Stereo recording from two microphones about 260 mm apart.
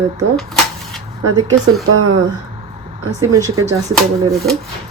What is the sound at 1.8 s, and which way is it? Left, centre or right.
Speech, right.